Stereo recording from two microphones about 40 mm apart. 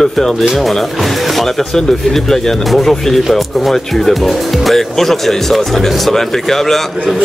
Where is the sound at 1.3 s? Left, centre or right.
Centre.